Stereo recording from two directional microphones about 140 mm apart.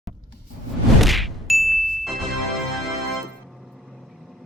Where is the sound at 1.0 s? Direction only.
Centre (ahead or behind).